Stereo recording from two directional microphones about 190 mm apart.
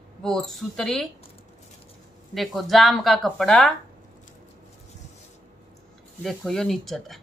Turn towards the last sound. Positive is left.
turn(degrees=0)  # may be behind; listen again after turning